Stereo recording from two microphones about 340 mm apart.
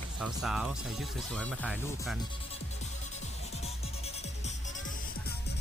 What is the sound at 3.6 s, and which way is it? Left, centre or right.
Music, centre.